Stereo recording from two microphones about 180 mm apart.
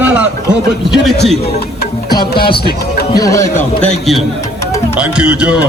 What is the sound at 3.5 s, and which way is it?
Speech, 40° left (ahead or behind).